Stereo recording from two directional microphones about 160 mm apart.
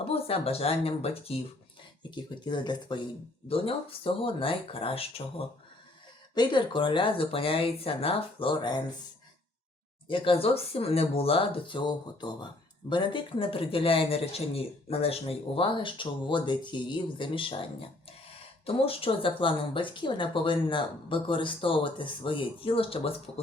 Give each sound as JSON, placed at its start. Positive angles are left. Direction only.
{"t": 0.0, "sound": "speech", "side_deg": 35}
{"t": 10.1, "sound": "speech", "side_deg": 35}